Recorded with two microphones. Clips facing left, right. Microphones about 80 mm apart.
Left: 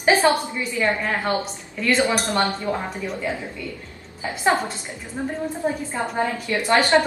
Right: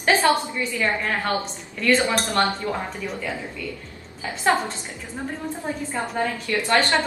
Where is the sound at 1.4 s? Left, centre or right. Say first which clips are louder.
Even; centre.